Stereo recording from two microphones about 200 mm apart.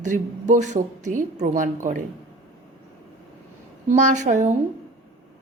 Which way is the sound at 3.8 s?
35° right (ahead or behind).